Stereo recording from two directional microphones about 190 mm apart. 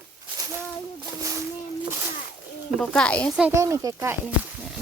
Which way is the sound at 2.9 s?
5° left (ahead or behind).